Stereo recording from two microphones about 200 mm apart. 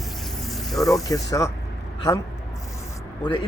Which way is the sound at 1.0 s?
15° left (ahead or behind).